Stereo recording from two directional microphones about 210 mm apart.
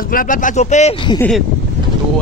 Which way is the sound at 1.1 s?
5° left (ahead or behind).